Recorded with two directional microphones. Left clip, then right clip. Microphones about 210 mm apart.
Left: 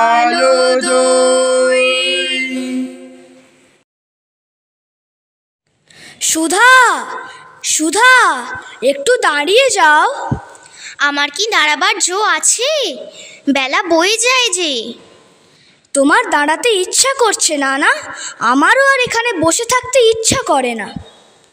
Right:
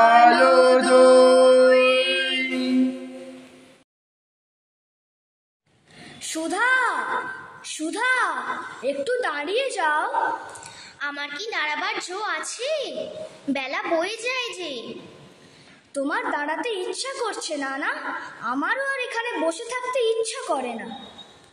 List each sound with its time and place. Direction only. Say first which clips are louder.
0.0 s mantra: left 3 dB; 25° left (ahead or behind)
1.4 s music: left 2 dB; 25° left (ahead or behind)
1.7 s music: left 5 dB; 45° left (ahead or behind)
6.0 s a woman's voice: left 13 dB; 45° left (ahead or behind)
15.9 s a woman's voice: left 14 dB; 50° left (ahead or behind)